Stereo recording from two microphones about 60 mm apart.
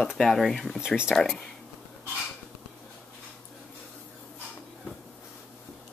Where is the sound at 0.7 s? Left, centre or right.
Centre.